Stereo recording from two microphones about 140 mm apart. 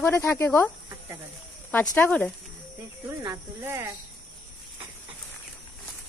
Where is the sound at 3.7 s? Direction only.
20° right (ahead or behind).